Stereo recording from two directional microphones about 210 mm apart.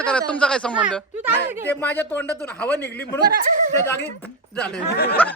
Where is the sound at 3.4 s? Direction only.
35° right (ahead or behind).